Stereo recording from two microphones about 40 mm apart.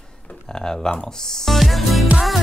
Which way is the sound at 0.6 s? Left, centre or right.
Centre.